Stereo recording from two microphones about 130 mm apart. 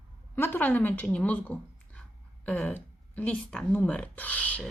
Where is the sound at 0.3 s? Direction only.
15° left (ahead or behind).